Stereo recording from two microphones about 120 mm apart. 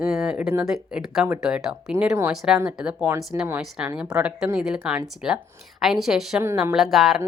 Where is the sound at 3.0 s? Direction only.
25° right (ahead or behind).